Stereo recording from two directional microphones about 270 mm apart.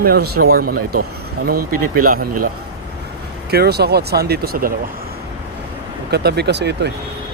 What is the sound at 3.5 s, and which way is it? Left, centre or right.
Speech, right.